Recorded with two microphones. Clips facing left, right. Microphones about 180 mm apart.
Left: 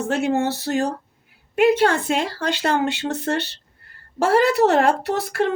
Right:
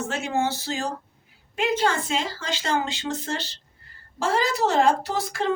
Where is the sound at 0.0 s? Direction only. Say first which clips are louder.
Left 5 dB; 60° left (ahead or behind).